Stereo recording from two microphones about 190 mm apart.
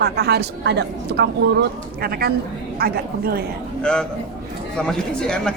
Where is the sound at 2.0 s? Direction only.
55° right (ahead or behind).